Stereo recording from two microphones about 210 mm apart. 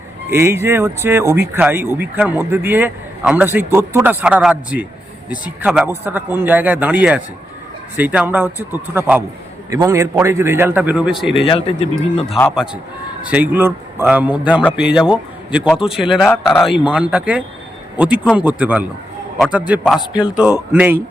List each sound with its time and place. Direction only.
0.3 s a man's voice: 10° right (ahead or behind)
11.3 s speech: 25° left (ahead or behind)
12.5 s a man's voice: centre (ahead or behind)